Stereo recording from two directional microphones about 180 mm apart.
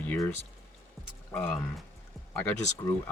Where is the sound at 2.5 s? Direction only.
40° left (ahead or behind).